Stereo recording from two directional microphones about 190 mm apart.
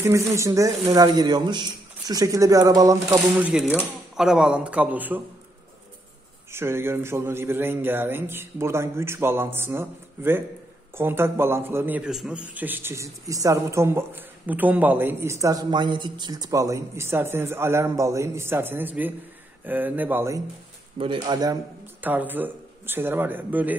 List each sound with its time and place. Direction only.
0.0 s a man's voice: 15° right (ahead or behind)
6.5 s a man's voice: 10° right (ahead or behind)
21.0 s speech: 25° right (ahead or behind)
22.0 s a man's voice: 10° right (ahead or behind)